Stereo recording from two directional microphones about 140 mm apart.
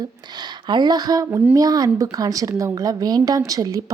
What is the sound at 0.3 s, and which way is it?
A woman's voice, 30° right (ahead or behind).